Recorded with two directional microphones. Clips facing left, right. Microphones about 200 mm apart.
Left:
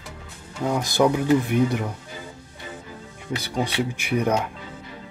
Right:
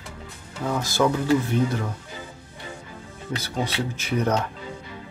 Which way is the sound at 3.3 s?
15° left (ahead or behind).